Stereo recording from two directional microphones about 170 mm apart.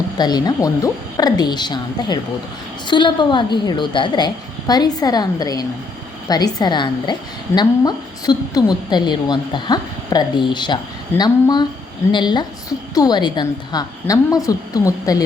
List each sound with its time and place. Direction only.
0.2 s a woman's voice: 25° left (ahead or behind)